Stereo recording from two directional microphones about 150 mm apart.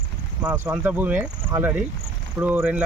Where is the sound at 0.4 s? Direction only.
10° right (ahead or behind).